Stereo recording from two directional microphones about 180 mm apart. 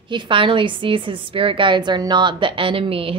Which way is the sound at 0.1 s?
30° right (ahead or behind).